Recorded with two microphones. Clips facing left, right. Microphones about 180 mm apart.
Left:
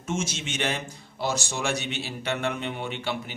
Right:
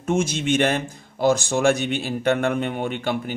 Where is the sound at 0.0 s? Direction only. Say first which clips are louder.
Right 8 dB; 55° right (ahead or behind).